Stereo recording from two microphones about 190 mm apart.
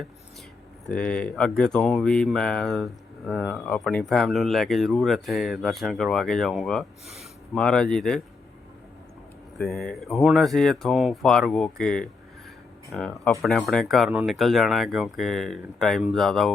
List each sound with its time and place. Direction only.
0.9 s speech: 5° left (ahead or behind)
9.6 s speech: centre (ahead or behind)